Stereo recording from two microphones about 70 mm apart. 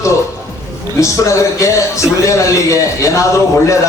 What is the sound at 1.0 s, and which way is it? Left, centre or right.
A man's voice, left.